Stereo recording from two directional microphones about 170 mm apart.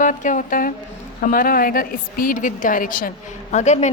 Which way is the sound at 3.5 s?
45° left (ahead or behind).